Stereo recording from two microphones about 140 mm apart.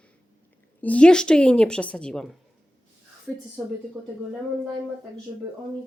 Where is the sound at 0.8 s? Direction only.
10° left (ahead or behind).